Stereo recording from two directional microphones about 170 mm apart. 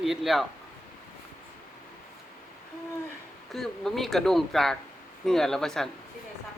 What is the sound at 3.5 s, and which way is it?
Speech, centre (ahead or behind).